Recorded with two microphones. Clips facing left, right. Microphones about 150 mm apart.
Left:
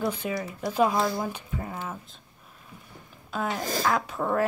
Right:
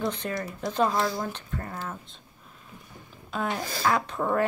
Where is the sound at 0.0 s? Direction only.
5° left (ahead or behind).